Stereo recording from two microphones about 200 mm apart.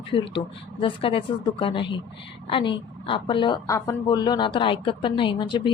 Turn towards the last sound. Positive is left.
turn(degrees=25)  # may be behind; listen again after turning